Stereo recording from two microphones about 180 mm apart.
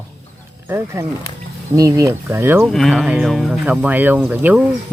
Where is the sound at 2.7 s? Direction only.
Centre (ahead or behind).